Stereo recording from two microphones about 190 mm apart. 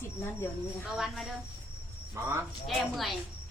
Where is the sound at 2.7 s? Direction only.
Centre (ahead or behind).